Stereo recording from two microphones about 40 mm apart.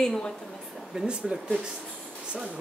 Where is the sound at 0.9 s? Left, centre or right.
Centre.